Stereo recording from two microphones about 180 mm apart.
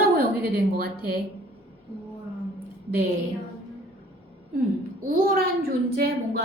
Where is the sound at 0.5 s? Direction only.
55° right (ahead or behind).